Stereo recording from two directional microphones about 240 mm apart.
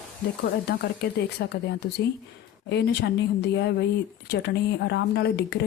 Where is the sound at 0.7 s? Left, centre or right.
Left.